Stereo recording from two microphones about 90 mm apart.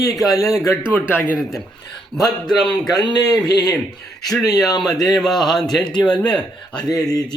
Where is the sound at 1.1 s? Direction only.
20° left (ahead or behind).